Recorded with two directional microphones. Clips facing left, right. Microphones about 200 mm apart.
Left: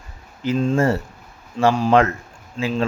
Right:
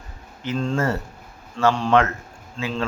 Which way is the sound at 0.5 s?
15° left (ahead or behind).